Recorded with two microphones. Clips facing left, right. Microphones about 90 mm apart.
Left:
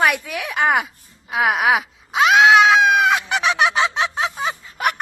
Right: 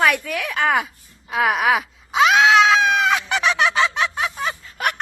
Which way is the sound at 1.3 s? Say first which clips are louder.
Left 1 dB; 5° left (ahead or behind).